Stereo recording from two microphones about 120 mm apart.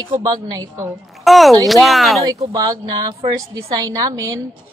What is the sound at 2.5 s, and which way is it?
A woman's voice, 30° right (ahead or behind).